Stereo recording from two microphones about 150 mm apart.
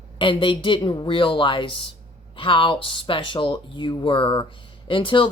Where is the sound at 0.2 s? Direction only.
35° left (ahead or behind).